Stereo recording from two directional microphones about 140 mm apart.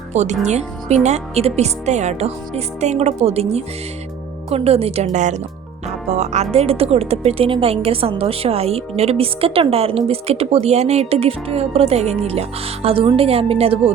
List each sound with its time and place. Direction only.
0.1 s speech: 55° right (ahead or behind)